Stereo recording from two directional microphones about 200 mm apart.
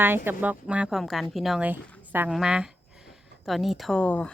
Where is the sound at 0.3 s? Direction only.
5° right (ahead or behind).